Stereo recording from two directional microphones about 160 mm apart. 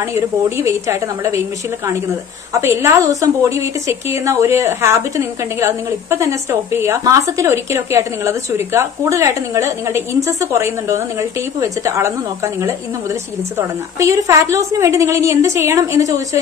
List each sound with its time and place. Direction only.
0.7 s a woman's voice: 20° right (ahead or behind)
2.5 s a woman's voice: 15° right (ahead or behind)
13.6 s a woman's voice: 20° right (ahead or behind)